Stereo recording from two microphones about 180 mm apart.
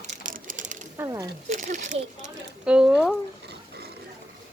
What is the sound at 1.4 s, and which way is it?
Speech, 45° right (ahead or behind).